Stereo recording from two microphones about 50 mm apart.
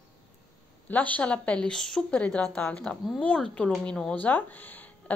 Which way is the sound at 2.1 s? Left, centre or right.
Left.